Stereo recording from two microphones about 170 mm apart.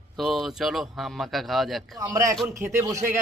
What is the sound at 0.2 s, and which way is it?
Speech, centre (ahead or behind).